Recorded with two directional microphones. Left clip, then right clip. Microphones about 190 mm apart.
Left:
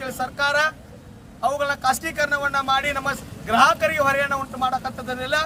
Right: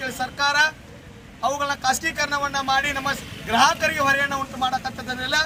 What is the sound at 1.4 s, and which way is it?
Speech, 20° left (ahead or behind).